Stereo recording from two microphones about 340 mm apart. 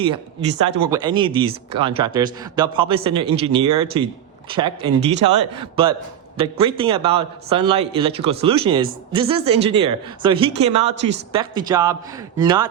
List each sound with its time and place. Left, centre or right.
0.9 s a man's voice: centre